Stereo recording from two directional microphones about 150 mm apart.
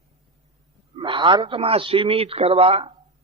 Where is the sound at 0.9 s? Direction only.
35° right (ahead or behind).